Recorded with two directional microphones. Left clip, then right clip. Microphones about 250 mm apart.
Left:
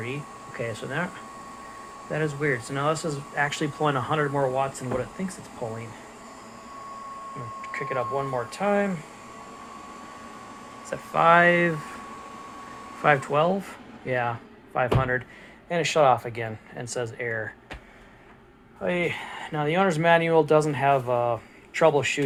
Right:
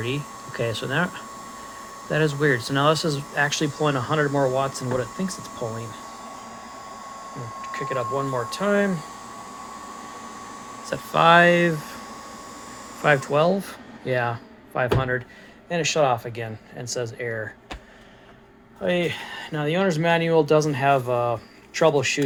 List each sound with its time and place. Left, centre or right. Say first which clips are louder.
0.7 s speech: right 6 dB; right
3.1 s speech: right 3 dB; right
7.8 s speech: right 2 dB; right
10.8 s speech: right 2 dB; right
11.4 s speech: right 2 dB; right
13.0 s speech: right 2 dB; centre
18.8 s speech: right 3 dB; right